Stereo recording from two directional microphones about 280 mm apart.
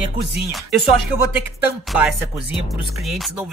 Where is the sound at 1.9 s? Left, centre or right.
Centre.